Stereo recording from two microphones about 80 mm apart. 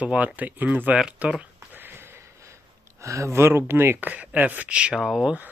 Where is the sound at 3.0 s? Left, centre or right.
Right; by 5.0 s centre.